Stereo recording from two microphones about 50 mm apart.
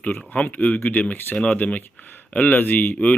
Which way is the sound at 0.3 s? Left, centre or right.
Left.